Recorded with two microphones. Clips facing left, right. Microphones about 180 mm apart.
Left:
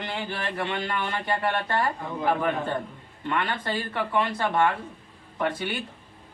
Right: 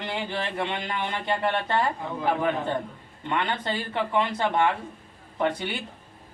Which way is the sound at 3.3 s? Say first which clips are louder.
Even; 20° right (ahead or behind).